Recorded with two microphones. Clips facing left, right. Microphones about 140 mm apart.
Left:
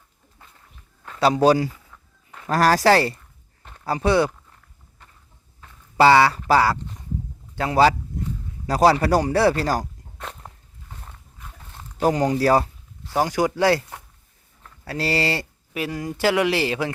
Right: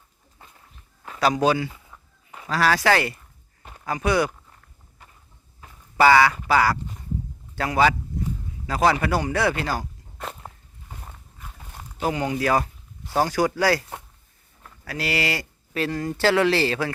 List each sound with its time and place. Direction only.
1.2 s speech: 30° left (ahead or behind)
1.9 s a sound: 10° right (ahead or behind)
2.5 s speech: 40° left (ahead or behind)
3.6 s a sound: 10° right (ahead or behind)
3.8 s speech: 30° left (ahead or behind)
5.6 s a sound: 10° right (ahead or behind)
6.0 s speech: 30° left (ahead or behind)
8.6 s speech: 35° left (ahead or behind)
10.2 s walk: 5° right (ahead or behind)
11.9 s speech: 40° left (ahead or behind)
13.1 s speech: 20° left (ahead or behind)
14.8 s speech: 30° left (ahead or behind)
15.7 s speech: 10° left (ahead or behind)